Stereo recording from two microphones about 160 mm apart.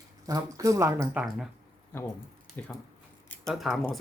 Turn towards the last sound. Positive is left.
turn(degrees=0)  # may be behind; listen again after turning